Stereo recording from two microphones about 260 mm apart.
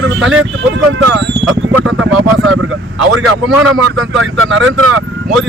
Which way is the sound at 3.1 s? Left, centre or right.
Right.